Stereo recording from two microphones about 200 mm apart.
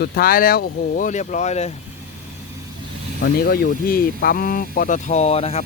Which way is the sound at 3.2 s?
50° left (ahead or behind).